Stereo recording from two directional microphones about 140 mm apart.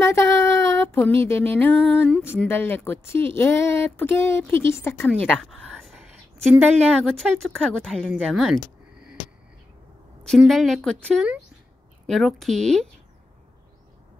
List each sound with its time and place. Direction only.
0.0 s a sound: 20° left (ahead or behind)
2.5 s speech: 15° left (ahead or behind)
5.2 s a woman's voice: 5° left (ahead or behind)
10.2 s a woman's voice: centre (ahead or behind)